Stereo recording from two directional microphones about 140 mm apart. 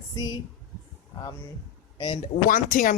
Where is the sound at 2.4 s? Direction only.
70° left (ahead or behind).